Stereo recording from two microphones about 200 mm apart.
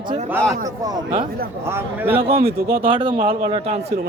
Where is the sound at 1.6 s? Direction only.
10° right (ahead or behind).